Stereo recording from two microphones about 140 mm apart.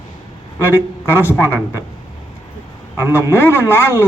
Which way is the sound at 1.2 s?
15° left (ahead or behind).